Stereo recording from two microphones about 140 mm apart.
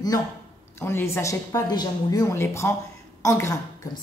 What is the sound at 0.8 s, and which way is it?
A woman's voice, 20° left (ahead or behind).